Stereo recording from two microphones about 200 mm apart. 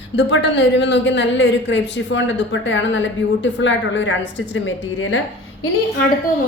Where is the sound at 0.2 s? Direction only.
60° left (ahead or behind); by 5.2 s 75° left (ahead or behind).